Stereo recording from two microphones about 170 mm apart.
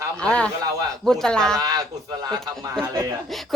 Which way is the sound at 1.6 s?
25° right (ahead or behind).